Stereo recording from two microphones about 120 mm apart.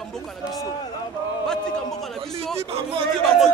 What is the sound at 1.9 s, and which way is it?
Speech, centre (ahead or behind).